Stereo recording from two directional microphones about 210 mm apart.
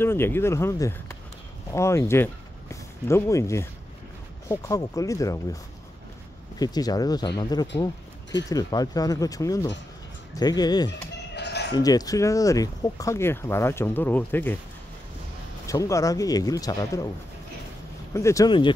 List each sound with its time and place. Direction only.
0.0 s speech: 10° left (ahead or behind)
6.6 s speech: 20° left (ahead or behind)
11.3 s fowl: 55° left (ahead or behind)
11.7 s speech: 15° left (ahead or behind)
15.6 s speech: 15° left (ahead or behind)
18.1 s speech: 15° left (ahead or behind)